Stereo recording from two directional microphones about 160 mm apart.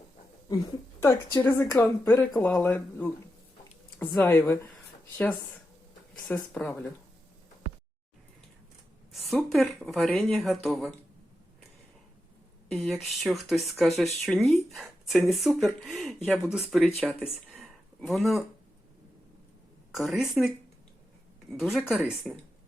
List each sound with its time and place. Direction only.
0.4 s speech: 25° left (ahead or behind)
9.1 s speech: centre (ahead or behind)
12.7 s speech: centre (ahead or behind)
17.5 s a sound: centre (ahead or behind)
19.9 s speech: centre (ahead or behind)
21.5 s speech: centre (ahead or behind)